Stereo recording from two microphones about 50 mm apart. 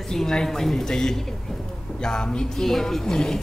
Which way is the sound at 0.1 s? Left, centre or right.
Centre.